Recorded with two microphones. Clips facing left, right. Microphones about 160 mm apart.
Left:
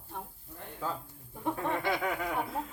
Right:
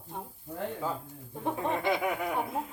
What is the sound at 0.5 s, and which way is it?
Speech, 90° right.